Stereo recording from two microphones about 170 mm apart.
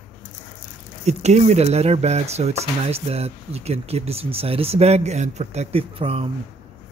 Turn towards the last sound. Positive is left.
turn(degrees=-35)  # may be behind; listen again after turning